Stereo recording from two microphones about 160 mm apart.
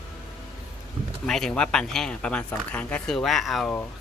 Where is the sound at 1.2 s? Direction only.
5° left (ahead or behind).